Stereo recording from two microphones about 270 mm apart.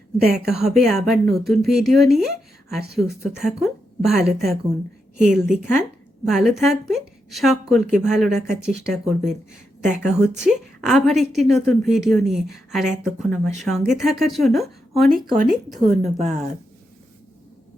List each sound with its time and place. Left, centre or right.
0.6 s a woman's voice: centre
15.9 s speech: right